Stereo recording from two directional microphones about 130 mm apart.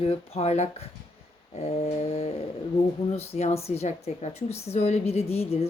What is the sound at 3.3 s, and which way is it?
A woman's voice, 50° left (ahead or behind).